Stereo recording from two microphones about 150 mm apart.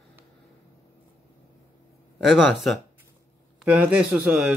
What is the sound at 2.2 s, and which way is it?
Speech, centre (ahead or behind).